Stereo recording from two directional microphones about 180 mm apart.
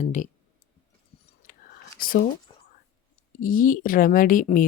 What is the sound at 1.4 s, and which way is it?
Whispering, 50° left (ahead or behind).